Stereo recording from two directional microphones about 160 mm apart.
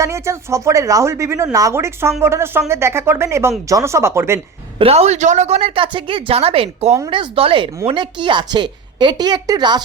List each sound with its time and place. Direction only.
0.0 s a woman's voice: 20° right (ahead or behind)
4.8 s a woman's voice: 40° right (ahead or behind)